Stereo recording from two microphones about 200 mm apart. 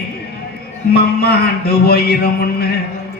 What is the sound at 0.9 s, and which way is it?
A man's voice, 50° left (ahead or behind).